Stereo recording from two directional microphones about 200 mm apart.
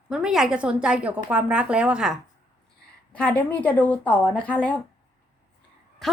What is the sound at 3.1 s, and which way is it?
A woman's voice, 5° left (ahead or behind).